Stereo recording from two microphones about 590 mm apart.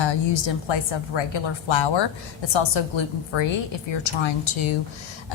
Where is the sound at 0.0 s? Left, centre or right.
Left.